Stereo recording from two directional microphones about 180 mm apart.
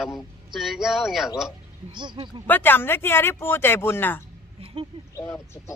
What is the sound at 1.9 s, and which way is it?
Speech, 25° right (ahead or behind).